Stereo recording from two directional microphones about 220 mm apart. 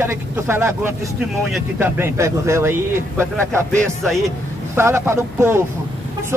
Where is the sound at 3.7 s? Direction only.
Centre (ahead or behind).